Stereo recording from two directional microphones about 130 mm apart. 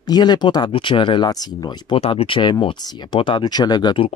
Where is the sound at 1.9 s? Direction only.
45° left (ahead or behind).